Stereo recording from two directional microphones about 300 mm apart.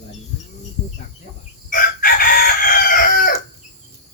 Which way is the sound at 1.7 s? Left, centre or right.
Left.